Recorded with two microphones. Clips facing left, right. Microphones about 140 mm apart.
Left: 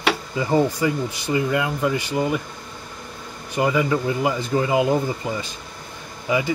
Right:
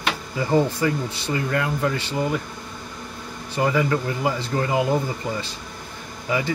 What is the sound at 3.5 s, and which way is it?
Speech, 15° left (ahead or behind).